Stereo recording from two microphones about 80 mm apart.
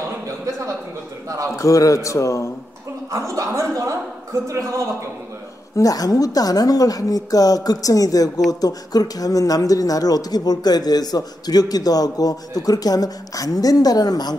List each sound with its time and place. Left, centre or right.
1.6 s a man's voice: left
3.1 s a man's voice: right
5.8 s speech: left